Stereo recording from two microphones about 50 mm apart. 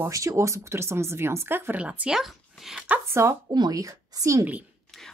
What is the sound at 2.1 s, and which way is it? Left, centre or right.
Speech, centre.